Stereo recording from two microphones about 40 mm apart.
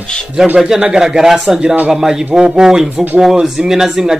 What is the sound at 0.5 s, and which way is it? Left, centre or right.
Speech, centre.